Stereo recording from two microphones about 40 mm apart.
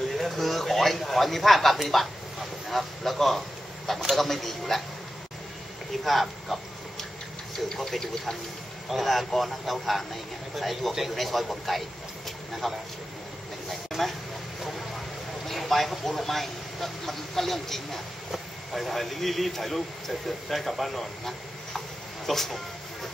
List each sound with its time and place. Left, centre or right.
0.1 s a man's voice: centre
6.0 s a sound: centre
7.5 s speech: centre
8.9 s speech: centre
13.7 s a sound: centre
15.4 s speech: centre